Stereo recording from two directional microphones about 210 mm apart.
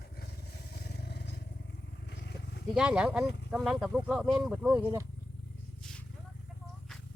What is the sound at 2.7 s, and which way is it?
Speech, 5° right (ahead or behind).